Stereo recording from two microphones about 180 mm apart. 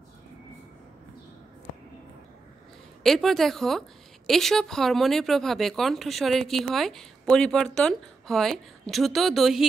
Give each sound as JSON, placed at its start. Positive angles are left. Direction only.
{"t": 3.0, "sound": "speech", "side_deg": 0}